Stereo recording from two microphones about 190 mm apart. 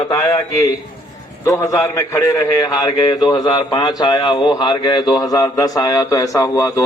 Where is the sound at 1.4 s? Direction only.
15° left (ahead or behind).